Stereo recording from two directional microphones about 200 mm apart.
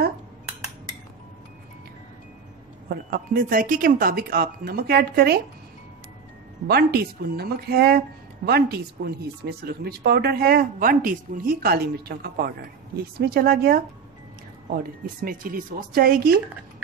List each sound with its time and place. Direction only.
3.1 s speech: 45° right (ahead or behind)
6.7 s speech: 50° right (ahead or behind)